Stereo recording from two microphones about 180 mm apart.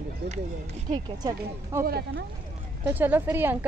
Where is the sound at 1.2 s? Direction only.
15° right (ahead or behind).